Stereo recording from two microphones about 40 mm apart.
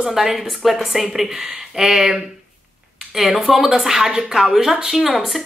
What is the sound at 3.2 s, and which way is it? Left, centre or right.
A woman's voice, centre.